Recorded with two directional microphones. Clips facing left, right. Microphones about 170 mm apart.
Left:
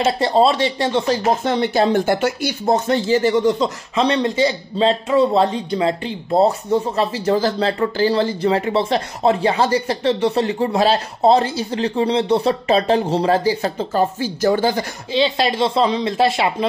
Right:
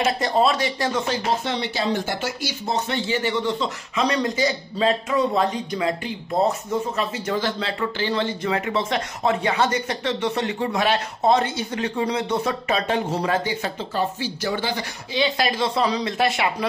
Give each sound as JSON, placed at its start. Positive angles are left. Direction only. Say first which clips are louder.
{"t": 0.0, "sound": "speech", "louder": "left 5 dB", "side_deg": 30}
{"t": 15.1, "sound": "a woman's voice", "louder": "left 5 dB", "side_deg": 25}